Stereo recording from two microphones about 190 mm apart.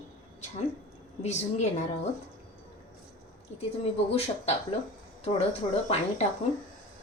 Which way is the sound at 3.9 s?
35° left (ahead or behind).